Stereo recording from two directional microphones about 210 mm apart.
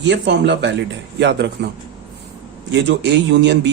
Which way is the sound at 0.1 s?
55° right (ahead or behind).